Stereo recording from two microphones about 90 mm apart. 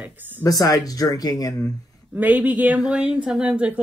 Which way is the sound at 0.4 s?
40° left (ahead or behind).